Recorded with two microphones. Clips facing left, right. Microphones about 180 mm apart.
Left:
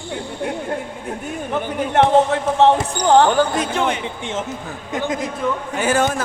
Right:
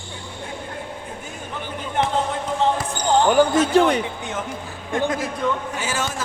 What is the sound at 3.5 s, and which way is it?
Speech, 30° right (ahead or behind).